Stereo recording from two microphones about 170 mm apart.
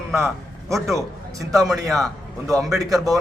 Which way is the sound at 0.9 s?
20° right (ahead or behind).